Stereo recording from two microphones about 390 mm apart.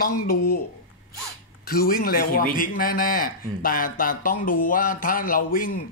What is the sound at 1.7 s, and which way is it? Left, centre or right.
Speech, left.